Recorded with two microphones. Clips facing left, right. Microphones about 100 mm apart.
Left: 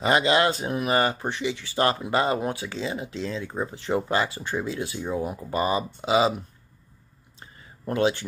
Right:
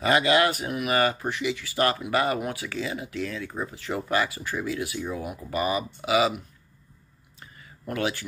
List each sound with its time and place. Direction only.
0.0 s speech: 25° left (ahead or behind)
7.8 s speech: 25° left (ahead or behind)